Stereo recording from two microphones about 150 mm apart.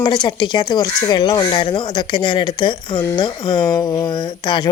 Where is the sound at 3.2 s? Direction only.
30° left (ahead or behind).